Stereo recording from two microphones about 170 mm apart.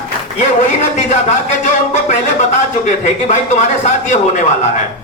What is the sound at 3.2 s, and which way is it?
Speech, 40° left (ahead or behind).